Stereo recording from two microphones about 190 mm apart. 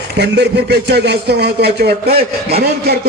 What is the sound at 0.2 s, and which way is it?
A man's voice, 65° right (ahead or behind).